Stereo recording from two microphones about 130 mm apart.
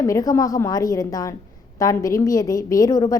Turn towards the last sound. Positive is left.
turn(degrees=25)  # may be behind; listen again after turning